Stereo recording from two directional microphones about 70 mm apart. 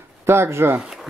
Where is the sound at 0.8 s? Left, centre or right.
Centre.